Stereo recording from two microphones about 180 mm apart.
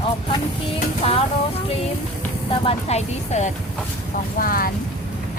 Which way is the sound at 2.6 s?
35° left (ahead or behind).